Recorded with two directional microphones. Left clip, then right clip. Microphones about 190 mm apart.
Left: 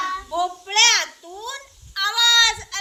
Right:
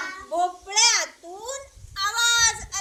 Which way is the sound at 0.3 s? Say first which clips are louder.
Left 3 dB; 10° right (ahead or behind).